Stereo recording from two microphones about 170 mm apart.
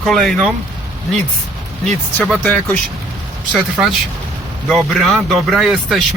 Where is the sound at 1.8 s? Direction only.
5° left (ahead or behind).